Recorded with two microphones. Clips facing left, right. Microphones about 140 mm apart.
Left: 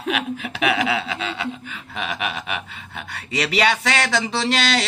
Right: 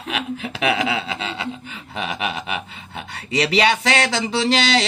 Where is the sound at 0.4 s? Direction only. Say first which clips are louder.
Even; 30° right (ahead or behind).